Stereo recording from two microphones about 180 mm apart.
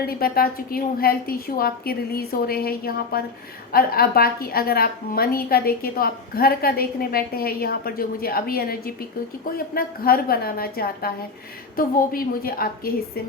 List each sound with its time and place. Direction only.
0.0 s a woman's voice: 55° left (ahead or behind)